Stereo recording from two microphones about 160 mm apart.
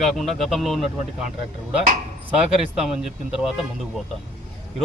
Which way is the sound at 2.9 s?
5° right (ahead or behind).